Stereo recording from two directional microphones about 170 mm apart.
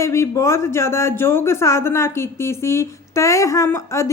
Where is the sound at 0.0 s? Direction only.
15° left (ahead or behind).